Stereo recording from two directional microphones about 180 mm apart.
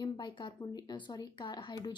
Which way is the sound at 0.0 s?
25° left (ahead or behind).